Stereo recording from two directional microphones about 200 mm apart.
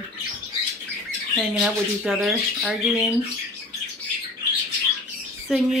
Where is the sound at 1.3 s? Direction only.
Centre (ahead or behind).